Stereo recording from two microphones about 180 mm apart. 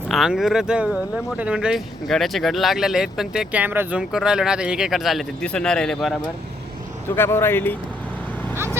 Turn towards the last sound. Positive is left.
turn(degrees=10)  # may be behind; listen again after turning